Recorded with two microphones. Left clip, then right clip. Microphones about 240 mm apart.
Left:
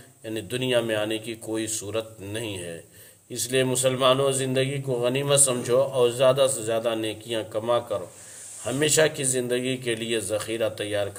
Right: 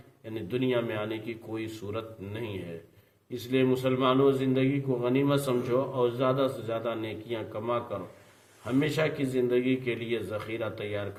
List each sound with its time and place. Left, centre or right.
0.5 s a man's voice: left